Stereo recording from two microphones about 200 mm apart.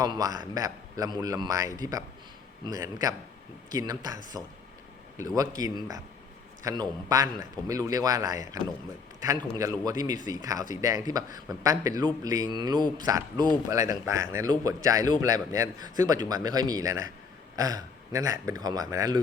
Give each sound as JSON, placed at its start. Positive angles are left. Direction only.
{"t": 0.0, "sound": "a man's voice", "side_deg": -20}
{"t": 9.6, "sound": "a man's voice", "side_deg": -20}